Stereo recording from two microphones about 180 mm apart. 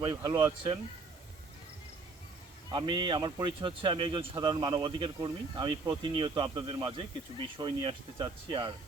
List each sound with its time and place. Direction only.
0.0 s speech: 20° right (ahead or behind)
2.6 s speech: 25° right (ahead or behind)